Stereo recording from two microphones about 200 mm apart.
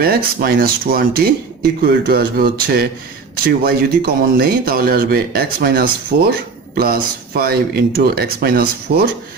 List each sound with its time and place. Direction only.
0.0 s speech: 50° right (ahead or behind)